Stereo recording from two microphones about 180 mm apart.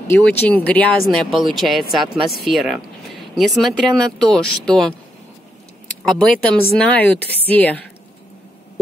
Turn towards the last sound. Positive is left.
turn(degrees=10)  # may be behind; listen again after turning